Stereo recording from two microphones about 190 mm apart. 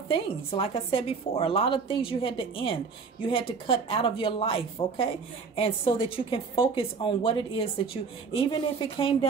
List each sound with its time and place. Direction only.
0.1 s a woman's voice: 30° left (ahead or behind)